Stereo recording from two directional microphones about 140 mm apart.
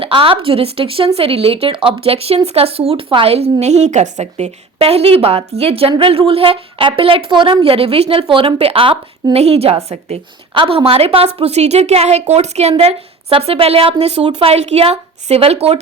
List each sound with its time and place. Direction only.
0.0 s a woman's voice: 40° right (ahead or behind)
9.4 s a woman's voice: 50° right (ahead or behind)